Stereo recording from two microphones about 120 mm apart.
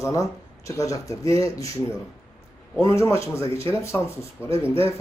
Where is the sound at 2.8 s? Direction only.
25° left (ahead or behind).